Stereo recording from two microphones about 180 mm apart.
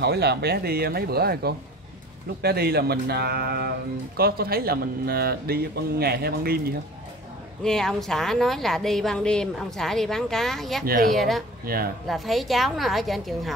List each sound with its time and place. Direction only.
0.0 s speech: 65° right (ahead or behind)
7.6 s a woman's voice: 5° left (ahead or behind)
11.6 s speech: 55° right (ahead or behind)
12.1 s a woman's voice: centre (ahead or behind)